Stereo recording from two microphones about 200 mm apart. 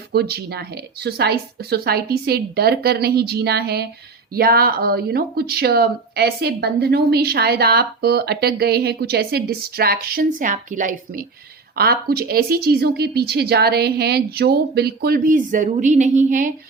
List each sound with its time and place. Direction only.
0.1 s speech: 55° right (ahead or behind)